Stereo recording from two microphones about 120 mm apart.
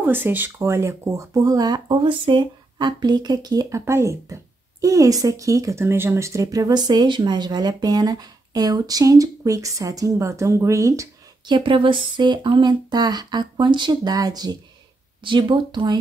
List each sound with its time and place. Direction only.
0.0 s speech: 15° right (ahead or behind); by 3.8 s 35° right (ahead or behind)
3.8 s speech: 25° right (ahead or behind)
11.4 s speech: 40° right (ahead or behind)